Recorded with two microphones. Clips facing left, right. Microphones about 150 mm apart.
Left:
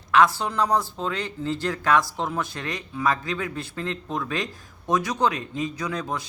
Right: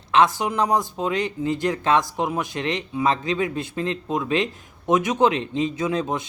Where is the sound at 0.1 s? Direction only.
20° right (ahead or behind).